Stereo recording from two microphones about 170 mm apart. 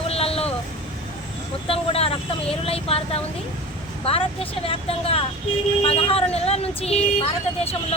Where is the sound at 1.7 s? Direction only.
35° left (ahead or behind).